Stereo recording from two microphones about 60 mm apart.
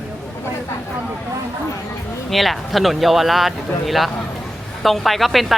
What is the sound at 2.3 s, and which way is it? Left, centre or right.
Speech, centre.